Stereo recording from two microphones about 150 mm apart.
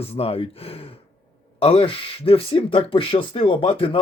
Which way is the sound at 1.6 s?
40° left (ahead or behind).